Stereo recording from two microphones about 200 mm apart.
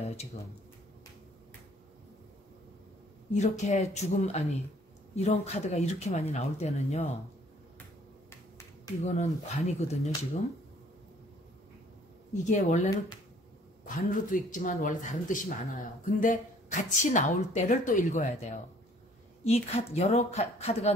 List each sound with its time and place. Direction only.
3.3 s speech: 35° left (ahead or behind)
8.3 s finger snapping: 15° left (ahead or behind)
9.0 s speech: 35° left (ahead or behind)
12.4 s speech: 35° left (ahead or behind)
19.4 s speech: 30° left (ahead or behind)